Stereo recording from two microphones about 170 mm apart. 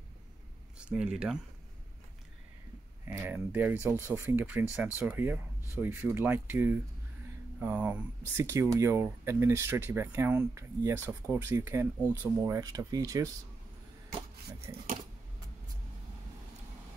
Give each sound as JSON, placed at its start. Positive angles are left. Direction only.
{"t": 0.7, "sound": "speech", "side_deg": -5}
{"t": 3.1, "sound": "speech", "side_deg": -10}
{"t": 14.7, "sound": "speech", "side_deg": -20}